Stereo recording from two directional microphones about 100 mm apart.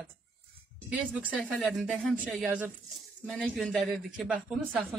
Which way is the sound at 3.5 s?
Centre (ahead or behind).